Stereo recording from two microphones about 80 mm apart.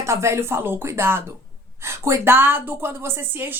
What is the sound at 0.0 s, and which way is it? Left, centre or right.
Speech, right.